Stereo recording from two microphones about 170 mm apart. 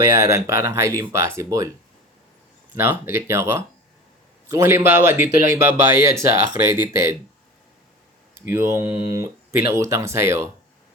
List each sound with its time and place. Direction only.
0.0 s speech: 15° right (ahead or behind)
2.7 s speech: 10° right (ahead or behind)
8.4 s speech: 15° right (ahead or behind)